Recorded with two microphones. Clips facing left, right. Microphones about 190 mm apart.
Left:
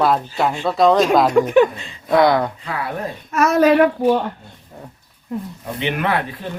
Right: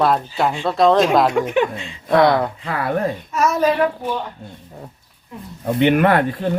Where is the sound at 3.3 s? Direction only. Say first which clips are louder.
Left 4 dB; 65° left (ahead or behind).